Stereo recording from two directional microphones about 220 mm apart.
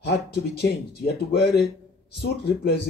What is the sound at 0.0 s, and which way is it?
A man's voice, 45° left (ahead or behind).